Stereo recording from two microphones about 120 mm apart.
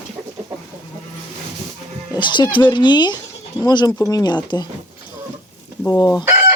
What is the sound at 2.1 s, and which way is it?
Music, 40° left (ahead or behind).